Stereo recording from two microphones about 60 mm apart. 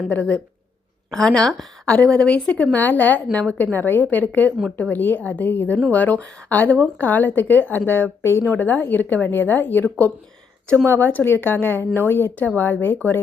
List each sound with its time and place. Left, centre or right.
0.1 s a woman's voice: left
8.5 s a woman's voice: left